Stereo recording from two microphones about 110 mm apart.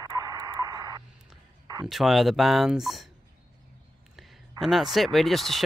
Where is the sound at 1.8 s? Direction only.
Centre (ahead or behind).